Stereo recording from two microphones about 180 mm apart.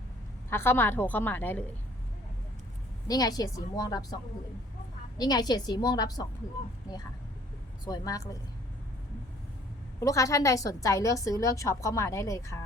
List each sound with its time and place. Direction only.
0.5 s a woman's voice: 10° left (ahead or behind)
3.1 s a woman's voice: 20° left (ahead or behind)
7.9 s a woman's voice: 20° left (ahead or behind)
10.0 s a woman's voice: 20° left (ahead or behind)